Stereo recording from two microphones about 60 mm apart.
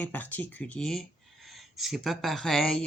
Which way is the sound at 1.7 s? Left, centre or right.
Centre.